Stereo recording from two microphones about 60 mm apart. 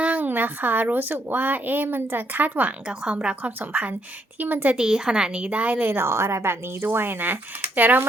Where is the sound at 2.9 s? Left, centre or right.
Centre.